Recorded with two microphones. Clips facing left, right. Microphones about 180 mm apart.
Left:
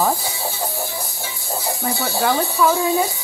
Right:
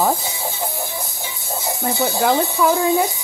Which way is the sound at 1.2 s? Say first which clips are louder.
Left 1 dB; 20° right (ahead or behind).